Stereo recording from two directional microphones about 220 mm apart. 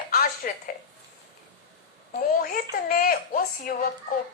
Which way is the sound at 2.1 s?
40° left (ahead or behind).